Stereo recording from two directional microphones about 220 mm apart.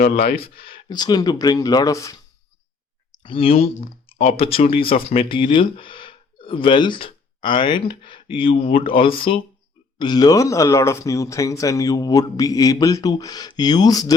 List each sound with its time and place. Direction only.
0.0 s speech: 45° left (ahead or behind)
0.7 s speech: 20° left (ahead or behind)
3.2 s speech: 25° left (ahead or behind)